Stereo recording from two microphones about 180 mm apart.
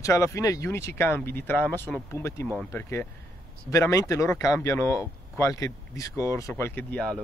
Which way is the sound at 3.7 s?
15° left (ahead or behind).